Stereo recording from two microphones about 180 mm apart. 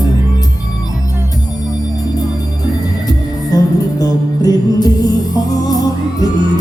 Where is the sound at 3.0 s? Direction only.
20° left (ahead or behind).